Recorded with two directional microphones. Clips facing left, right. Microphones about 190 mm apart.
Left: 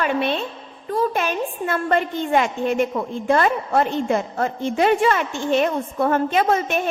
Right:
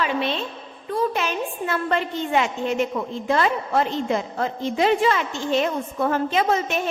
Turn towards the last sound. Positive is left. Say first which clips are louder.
# left 2 dB
turn(degrees=55)  # may be behind; listen again after turning